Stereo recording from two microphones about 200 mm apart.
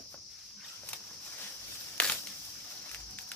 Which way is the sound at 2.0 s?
5° left (ahead or behind).